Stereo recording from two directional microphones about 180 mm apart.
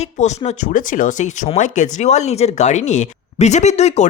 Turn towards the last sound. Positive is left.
turn(degrees=40)  # may be behind; listen again after turning